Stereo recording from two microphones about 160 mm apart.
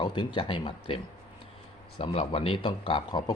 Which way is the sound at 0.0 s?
30° left (ahead or behind).